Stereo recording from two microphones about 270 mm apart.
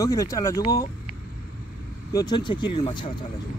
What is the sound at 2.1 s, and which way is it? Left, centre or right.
Speech, centre.